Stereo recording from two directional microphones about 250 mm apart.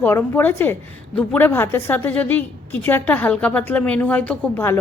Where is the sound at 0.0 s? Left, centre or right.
Centre.